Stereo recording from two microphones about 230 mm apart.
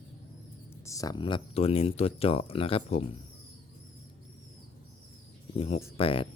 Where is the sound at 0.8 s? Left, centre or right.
Centre.